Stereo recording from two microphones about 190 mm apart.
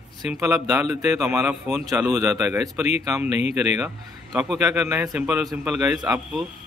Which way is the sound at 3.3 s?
35° left (ahead or behind).